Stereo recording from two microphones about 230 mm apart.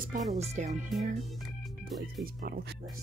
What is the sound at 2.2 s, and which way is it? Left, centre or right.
Speech, right.